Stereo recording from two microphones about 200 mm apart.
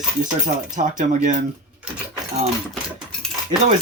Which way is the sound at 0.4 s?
35° right (ahead or behind).